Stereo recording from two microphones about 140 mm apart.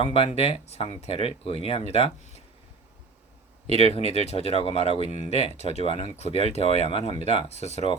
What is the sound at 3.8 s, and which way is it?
Speech, 45° left (ahead or behind).